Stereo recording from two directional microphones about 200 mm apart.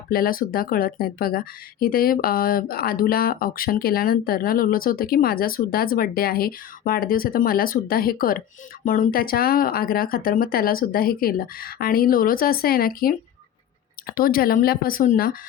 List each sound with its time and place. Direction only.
0.1 s speech: 45° left (ahead or behind)